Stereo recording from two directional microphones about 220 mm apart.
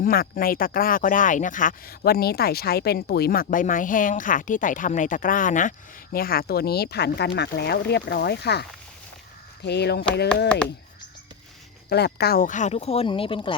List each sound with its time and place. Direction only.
0.0 s speech: 40° left (ahead or behind)
9.6 s speech: 50° left (ahead or behind)
11.9 s speech: 50° left (ahead or behind); by 13.6 s 25° left (ahead or behind)